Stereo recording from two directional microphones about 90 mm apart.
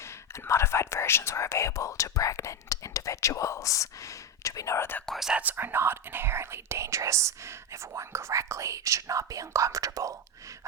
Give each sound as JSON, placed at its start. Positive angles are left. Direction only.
{"t": 0.4, "sound": "speech", "side_deg": 30}
{"t": 5.0, "sound": "speech", "side_deg": 0}
{"t": 5.3, "sound": "speech", "side_deg": -15}